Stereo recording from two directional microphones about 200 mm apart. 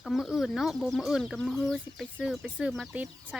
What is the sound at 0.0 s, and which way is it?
Speech, centre (ahead or behind).